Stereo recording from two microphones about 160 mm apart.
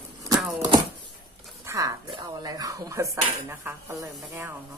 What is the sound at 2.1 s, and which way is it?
Speech, 25° right (ahead or behind).